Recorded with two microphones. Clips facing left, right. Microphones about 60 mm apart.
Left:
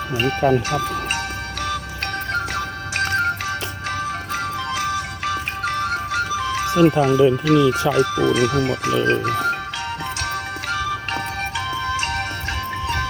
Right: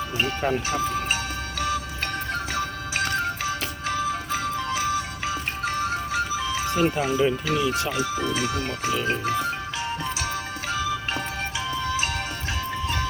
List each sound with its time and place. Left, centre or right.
0.2 s music: left
7.9 s speech: left
10.2 s music: left